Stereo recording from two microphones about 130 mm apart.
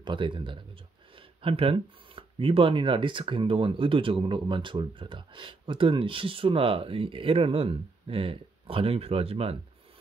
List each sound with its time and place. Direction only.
0.0 s speech: 40° right (ahead or behind)